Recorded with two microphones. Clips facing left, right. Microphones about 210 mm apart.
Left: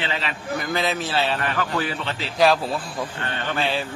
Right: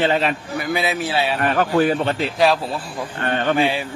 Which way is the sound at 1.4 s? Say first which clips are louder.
Right 8 dB; 45° right (ahead or behind).